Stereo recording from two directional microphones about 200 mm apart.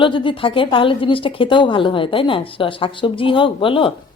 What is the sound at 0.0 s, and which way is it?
A woman's voice, 25° left (ahead or behind).